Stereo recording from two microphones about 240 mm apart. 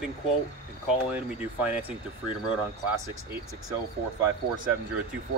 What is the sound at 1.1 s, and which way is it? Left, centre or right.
Speech, centre.